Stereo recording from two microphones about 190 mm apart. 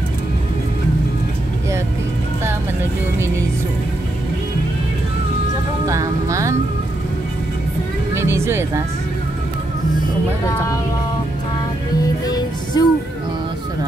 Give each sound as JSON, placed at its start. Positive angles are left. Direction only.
{"t": 5.9, "sound": "speech", "side_deg": -15}
{"t": 8.1, "sound": "music", "side_deg": -15}
{"t": 12.3, "sound": "music", "side_deg": 20}